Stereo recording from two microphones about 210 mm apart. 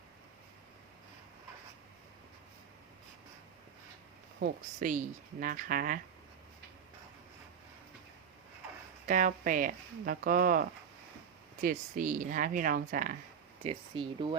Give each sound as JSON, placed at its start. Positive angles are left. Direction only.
{"t": 4.4, "sound": "speech", "side_deg": -40}
{"t": 9.0, "sound": "speech", "side_deg": -40}
{"t": 13.7, "sound": "speech", "side_deg": -25}